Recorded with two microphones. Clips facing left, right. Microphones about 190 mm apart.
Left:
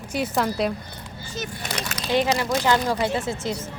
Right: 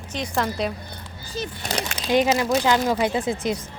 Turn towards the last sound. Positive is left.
turn(degrees=-15)  # may be behind; listen again after turning